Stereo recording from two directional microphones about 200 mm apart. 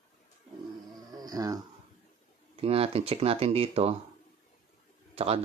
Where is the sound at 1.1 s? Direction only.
20° right (ahead or behind).